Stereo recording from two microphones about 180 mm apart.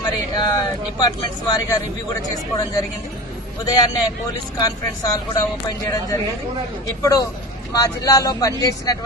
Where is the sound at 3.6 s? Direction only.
20° left (ahead or behind).